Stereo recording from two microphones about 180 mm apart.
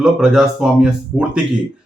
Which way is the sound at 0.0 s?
5° right (ahead or behind).